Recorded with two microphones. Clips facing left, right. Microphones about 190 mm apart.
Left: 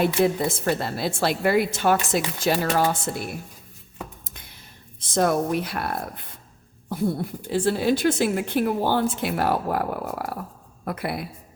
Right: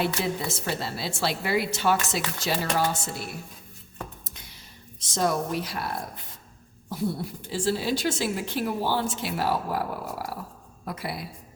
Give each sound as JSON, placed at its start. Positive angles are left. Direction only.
{"t": 0.0, "sound": "a woman's voice", "side_deg": 50}
{"t": 4.9, "sound": "a woman's voice", "side_deg": 55}